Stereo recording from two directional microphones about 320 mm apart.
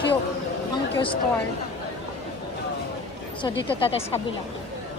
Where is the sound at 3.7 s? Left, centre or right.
Centre.